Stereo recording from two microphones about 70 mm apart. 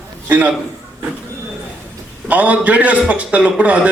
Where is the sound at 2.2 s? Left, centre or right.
Right.